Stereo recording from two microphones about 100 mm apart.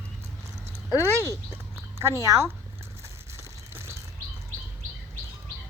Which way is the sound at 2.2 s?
30° right (ahead or behind).